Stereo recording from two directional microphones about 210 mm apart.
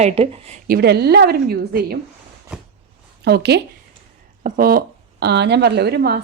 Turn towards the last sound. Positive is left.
turn(degrees=-50)  # may be behind; listen again after turning